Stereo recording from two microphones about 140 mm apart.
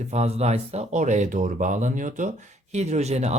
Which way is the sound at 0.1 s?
50° right (ahead or behind).